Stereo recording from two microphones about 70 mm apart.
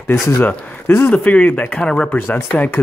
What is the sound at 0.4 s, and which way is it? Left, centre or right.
Speech, left.